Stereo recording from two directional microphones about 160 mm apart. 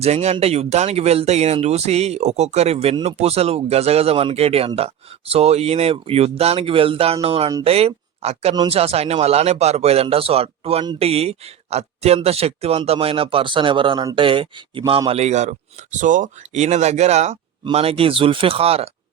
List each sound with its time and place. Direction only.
0.0 s speech: 45° right (ahead or behind)